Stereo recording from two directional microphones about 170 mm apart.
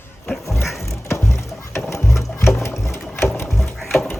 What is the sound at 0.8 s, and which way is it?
Music, 15° left (ahead or behind).